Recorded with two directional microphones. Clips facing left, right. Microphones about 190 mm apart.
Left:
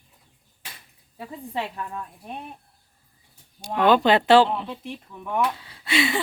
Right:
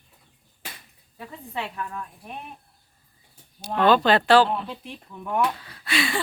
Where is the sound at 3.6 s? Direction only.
10° left (ahead or behind).